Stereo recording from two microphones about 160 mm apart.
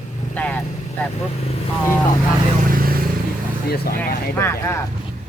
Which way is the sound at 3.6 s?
75° left (ahead or behind).